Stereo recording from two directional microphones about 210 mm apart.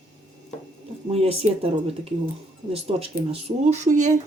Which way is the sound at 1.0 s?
30° right (ahead or behind).